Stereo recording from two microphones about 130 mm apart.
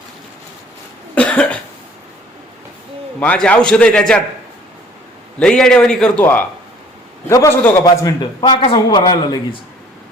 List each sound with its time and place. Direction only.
1.1 s cough: 10° left (ahead or behind)
3.2 s a man's voice: 10° left (ahead or behind)
5.4 s a man's voice: 5° left (ahead or behind)
7.3 s a man's voice: 25° left (ahead or behind)